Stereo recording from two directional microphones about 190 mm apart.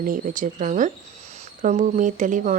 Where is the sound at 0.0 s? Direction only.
45° right (ahead or behind).